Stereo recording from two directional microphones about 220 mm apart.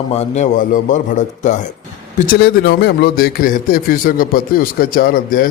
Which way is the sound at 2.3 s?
45° left (ahead or behind).